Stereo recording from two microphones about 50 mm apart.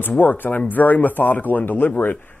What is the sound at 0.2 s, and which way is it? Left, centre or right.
Speech, left.